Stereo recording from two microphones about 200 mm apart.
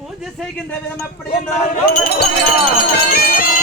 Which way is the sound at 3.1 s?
45° left (ahead or behind).